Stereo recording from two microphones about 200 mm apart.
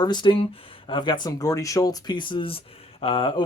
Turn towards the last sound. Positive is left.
turn(degrees=25)  # may be behind; listen again after turning